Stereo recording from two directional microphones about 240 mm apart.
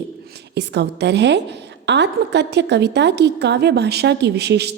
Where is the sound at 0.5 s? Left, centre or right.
Right.